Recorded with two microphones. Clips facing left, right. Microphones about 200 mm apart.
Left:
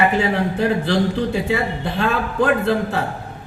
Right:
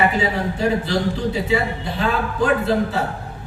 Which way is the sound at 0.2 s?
55° left (ahead or behind).